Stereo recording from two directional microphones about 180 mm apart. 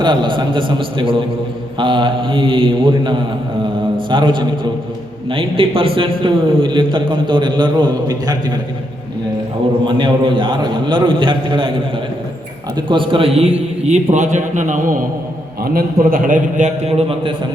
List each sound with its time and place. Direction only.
0.0 s a man's voice: 25° right (ahead or behind)
9.8 s a man's voice: 25° right (ahead or behind)
12.7 s a man's voice: 25° right (ahead or behind)